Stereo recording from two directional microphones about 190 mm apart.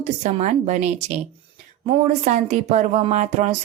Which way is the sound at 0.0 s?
40° right (ahead or behind).